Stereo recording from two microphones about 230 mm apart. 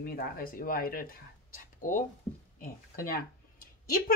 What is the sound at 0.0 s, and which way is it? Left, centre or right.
Speech, left.